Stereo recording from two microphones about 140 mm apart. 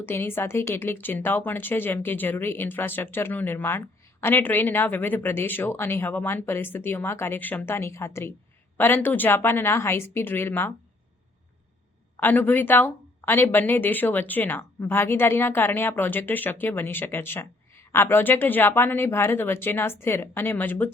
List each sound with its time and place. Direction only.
0.0 s speech: 15° left (ahead or behind)
12.1 s speech: 15° left (ahead or behind)